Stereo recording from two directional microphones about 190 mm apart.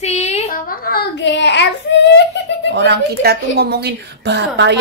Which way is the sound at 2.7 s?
65° right (ahead or behind).